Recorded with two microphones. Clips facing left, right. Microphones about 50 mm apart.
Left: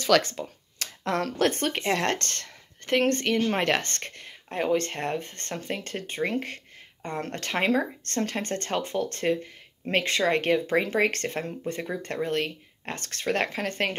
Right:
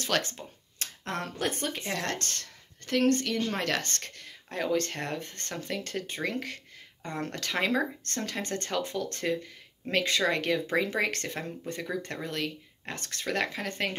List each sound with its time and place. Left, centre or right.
0.7 s speech: left